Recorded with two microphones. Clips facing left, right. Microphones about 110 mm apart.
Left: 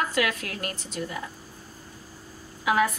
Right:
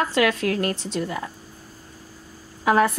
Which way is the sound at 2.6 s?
40° right (ahead or behind).